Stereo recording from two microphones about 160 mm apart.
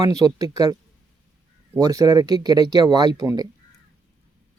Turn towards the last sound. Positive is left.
turn(degrees=-25)  # may be behind; listen again after turning